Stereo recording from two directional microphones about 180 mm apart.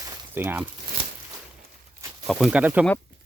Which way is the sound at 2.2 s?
5° right (ahead or behind).